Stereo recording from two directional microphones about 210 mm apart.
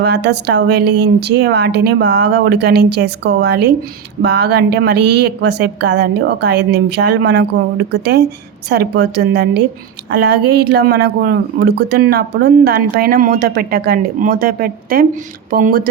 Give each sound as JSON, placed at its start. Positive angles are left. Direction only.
{"t": 0.0, "sound": "speech", "side_deg": -55}
{"t": 8.7, "sound": "speech", "side_deg": -50}